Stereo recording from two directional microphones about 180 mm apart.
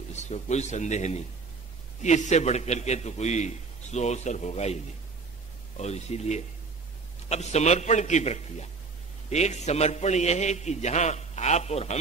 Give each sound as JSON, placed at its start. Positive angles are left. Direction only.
{"t": 0.1, "sound": "a man's voice", "side_deg": 40}
{"t": 5.8, "sound": "a man's voice", "side_deg": 35}